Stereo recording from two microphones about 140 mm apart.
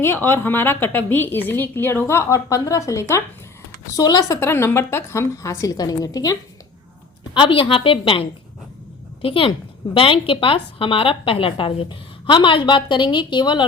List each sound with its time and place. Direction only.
0.0 s a woman's voice: 15° left (ahead or behind)
7.3 s a woman's voice: 40° left (ahead or behind)